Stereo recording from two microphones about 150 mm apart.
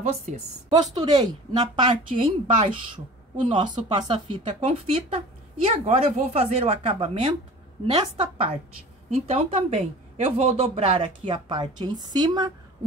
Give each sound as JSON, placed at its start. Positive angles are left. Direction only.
{"t": 0.3, "sound": "a woman's voice", "side_deg": -55}
{"t": 0.9, "sound": "a woman's voice", "side_deg": -25}
{"t": 2.4, "sound": "speech", "side_deg": -50}
{"t": 3.3, "sound": "speech", "side_deg": -30}